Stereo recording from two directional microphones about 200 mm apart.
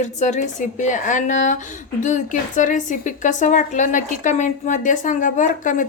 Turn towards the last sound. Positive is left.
turn(degrees=40)  # may be behind; listen again after turning